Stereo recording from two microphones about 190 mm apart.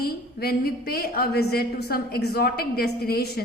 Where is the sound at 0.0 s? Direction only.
55° left (ahead or behind).